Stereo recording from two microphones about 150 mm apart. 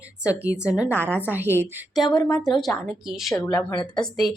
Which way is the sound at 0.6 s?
25° left (ahead or behind).